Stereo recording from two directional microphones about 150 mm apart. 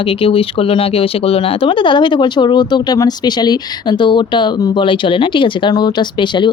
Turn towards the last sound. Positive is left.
turn(degrees=30)  # may be behind; listen again after turning